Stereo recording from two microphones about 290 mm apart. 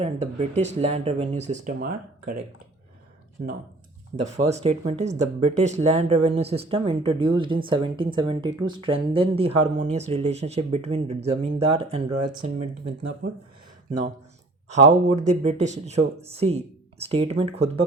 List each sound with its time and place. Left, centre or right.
0.0 s speech: right
4.4 s speech: right
13.2 s speech: right
14.7 s speech: right